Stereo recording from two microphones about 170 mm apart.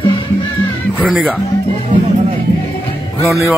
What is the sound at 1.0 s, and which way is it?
Speech, 5° right (ahead or behind).